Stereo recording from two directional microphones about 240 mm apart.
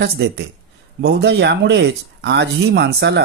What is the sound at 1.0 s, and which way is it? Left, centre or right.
Speech, right.